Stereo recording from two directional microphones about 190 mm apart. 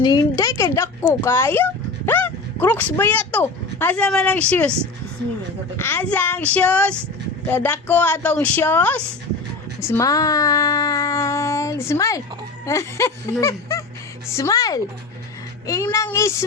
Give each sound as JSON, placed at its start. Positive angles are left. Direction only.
{"t": 0.0, "sound": "speech", "side_deg": 20}
{"t": 5.7, "sound": "speech", "side_deg": 10}
{"t": 13.4, "sound": "music", "side_deg": 15}
{"t": 14.3, "sound": "a woman's voice", "side_deg": 15}